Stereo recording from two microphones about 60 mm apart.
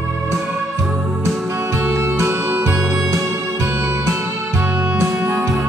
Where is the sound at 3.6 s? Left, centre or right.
Right.